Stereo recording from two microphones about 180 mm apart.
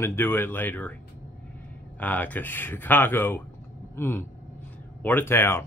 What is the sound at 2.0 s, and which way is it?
A man's voice, 10° left (ahead or behind).